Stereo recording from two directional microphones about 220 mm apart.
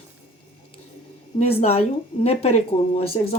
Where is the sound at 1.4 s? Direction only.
30° left (ahead or behind).